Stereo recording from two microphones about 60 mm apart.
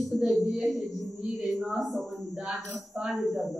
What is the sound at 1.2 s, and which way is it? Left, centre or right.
Speech, centre.